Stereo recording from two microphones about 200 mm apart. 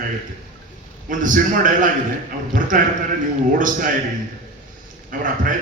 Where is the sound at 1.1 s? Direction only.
40° right (ahead or behind).